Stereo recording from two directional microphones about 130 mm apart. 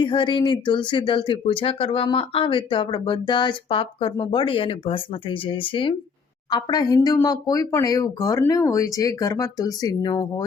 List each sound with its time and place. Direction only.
0.0 s speech: 40° left (ahead or behind)